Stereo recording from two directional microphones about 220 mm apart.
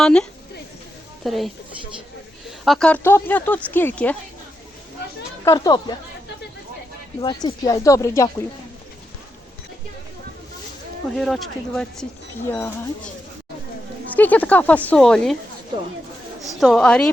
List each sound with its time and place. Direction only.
0.0 s a woman's voice: 5° left (ahead or behind)
2.6 s speech: 5° left (ahead or behind)
5.5 s speech: 15° left (ahead or behind)
7.2 s speech: 20° left (ahead or behind)
11.1 s speech: centre (ahead or behind)
14.2 s speech: 5° left (ahead or behind)
16.6 s speech: centre (ahead or behind)